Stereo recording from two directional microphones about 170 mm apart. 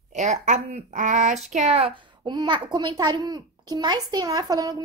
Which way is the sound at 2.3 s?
25° right (ahead or behind).